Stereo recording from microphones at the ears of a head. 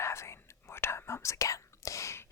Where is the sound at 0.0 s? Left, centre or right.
Left.